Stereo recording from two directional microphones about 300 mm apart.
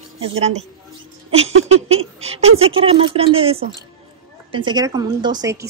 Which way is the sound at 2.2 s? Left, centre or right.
Centre.